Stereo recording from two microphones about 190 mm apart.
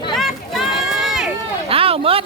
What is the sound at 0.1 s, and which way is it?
Run, centre (ahead or behind).